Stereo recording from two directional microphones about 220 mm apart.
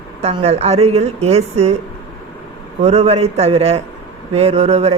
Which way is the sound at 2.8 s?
30° right (ahead or behind).